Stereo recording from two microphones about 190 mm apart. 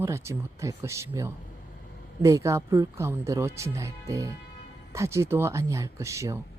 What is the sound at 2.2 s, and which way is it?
Speech, 15° right (ahead or behind).